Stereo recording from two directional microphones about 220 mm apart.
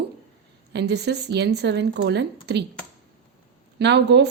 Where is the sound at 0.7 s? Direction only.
50° right (ahead or behind).